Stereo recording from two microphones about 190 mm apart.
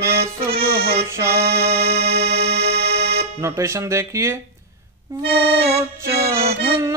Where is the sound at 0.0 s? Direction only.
55° right (ahead or behind).